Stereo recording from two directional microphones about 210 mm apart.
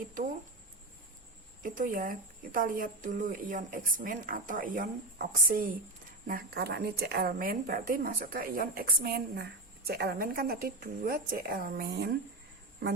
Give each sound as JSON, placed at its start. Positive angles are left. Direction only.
{"t": 0.0, "sound": "a woman's voice", "side_deg": -40}
{"t": 1.6, "sound": "a woman's voice", "side_deg": -40}